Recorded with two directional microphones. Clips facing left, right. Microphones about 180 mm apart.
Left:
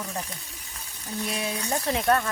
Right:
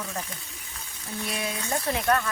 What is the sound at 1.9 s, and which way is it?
Speech, 30° left (ahead or behind).